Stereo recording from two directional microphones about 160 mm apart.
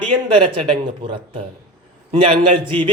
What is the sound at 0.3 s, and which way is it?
A man's voice, 35° right (ahead or behind).